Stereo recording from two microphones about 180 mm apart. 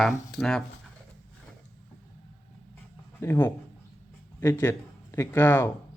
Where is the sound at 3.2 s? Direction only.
15° left (ahead or behind).